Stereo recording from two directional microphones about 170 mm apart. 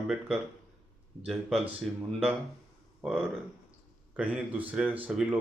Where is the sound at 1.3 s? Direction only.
Centre (ahead or behind).